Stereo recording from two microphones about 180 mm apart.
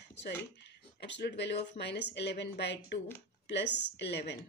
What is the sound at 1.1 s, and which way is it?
Speech, 70° left (ahead or behind).